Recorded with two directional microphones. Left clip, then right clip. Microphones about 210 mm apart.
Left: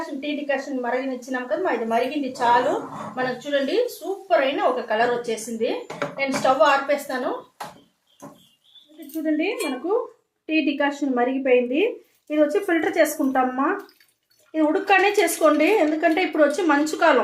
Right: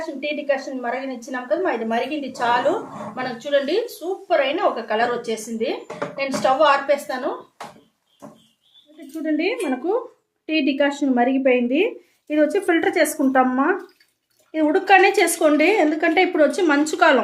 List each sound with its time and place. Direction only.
0.2 s a woman's voice: 30° right (ahead or behind)
9.2 s a woman's voice: 40° right (ahead or behind)